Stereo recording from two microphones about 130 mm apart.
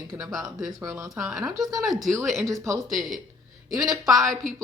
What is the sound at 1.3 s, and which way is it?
Speech, 5° right (ahead or behind).